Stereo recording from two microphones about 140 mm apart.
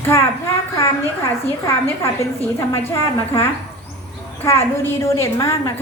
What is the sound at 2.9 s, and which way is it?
A woman's voice, 20° left (ahead or behind).